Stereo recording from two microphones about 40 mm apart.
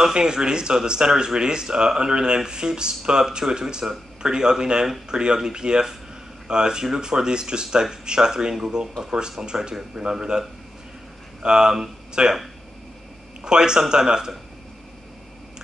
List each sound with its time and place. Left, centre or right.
0.0 s speech: centre
11.4 s speech: centre
13.4 s speech: centre